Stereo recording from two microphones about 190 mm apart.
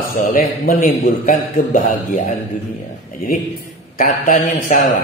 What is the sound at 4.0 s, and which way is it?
Speech, 45° left (ahead or behind).